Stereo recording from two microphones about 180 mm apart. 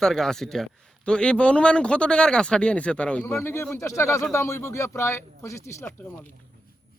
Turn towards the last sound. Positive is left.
turn(degrees=15)  # may be behind; listen again after turning